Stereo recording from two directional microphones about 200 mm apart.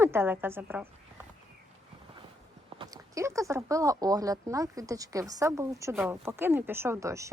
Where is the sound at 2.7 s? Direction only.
20° right (ahead or behind).